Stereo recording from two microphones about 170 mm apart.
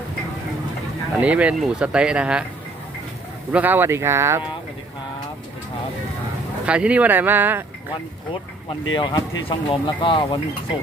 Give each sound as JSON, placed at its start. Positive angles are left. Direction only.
{"t": 1.2, "sound": "speech", "side_deg": -5}
{"t": 3.5, "sound": "speech", "side_deg": -10}
{"t": 6.7, "sound": "speech", "side_deg": -5}
{"t": 9.0, "sound": "speech", "side_deg": 25}